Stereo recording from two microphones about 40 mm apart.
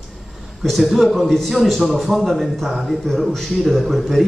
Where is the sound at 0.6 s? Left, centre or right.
Centre.